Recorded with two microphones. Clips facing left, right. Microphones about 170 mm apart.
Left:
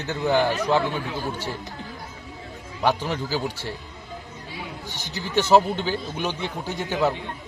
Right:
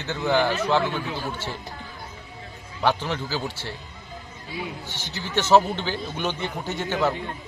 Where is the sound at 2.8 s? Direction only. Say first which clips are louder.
Left 1 dB; 10° left (ahead or behind).